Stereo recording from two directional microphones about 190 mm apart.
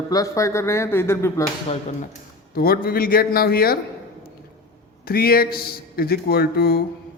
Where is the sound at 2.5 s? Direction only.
50° left (ahead or behind).